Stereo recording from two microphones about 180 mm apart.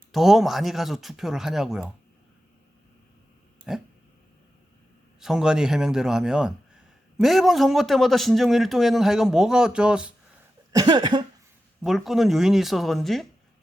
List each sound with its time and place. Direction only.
0.1 s a man's voice: centre (ahead or behind)
5.2 s a man's voice: 5° right (ahead or behind)
10.7 s cough: 20° right (ahead or behind)
11.8 s a man's voice: centre (ahead or behind)